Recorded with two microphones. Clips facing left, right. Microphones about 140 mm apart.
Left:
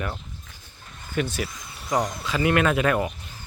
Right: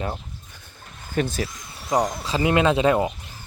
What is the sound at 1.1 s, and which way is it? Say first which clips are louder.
Speech: right 2 dB; 40° right (ahead or behind).